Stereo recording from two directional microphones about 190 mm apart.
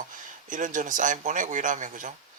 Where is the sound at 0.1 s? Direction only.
45° right (ahead or behind).